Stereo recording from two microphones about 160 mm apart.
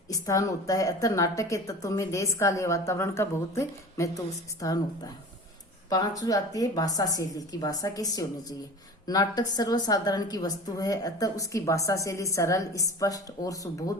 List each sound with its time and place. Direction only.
0.1 s a woman's voice: 20° left (ahead or behind)
5.9 s a woman's voice: 20° left (ahead or behind)